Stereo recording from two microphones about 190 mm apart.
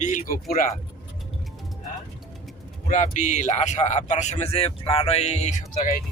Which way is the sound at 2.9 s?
40° left (ahead or behind).